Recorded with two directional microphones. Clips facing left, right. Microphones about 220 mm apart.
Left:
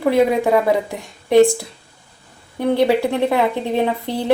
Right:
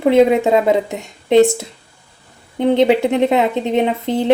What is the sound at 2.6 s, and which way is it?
A woman's voice, 20° right (ahead or behind).